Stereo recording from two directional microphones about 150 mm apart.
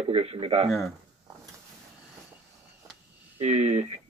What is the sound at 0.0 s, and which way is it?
Speech, 45° right (ahead or behind).